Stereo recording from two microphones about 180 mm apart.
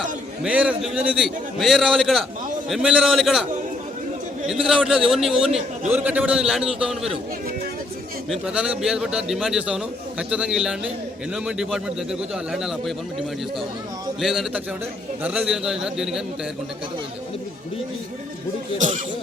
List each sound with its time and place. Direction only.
0.4 s a man's voice: 5° right (ahead or behind)
4.4 s a man's voice: 5° right (ahead or behind)
8.3 s a man's voice: 5° right (ahead or behind)
14.2 s a man's voice: centre (ahead or behind)
18.8 s speech: 45° right (ahead or behind)